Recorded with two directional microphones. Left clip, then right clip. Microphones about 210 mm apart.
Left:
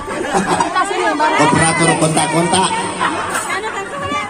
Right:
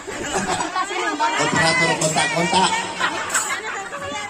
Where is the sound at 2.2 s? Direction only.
55° left (ahead or behind).